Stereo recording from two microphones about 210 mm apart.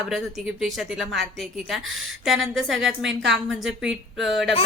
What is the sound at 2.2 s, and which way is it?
A woman's voice, centre (ahead or behind).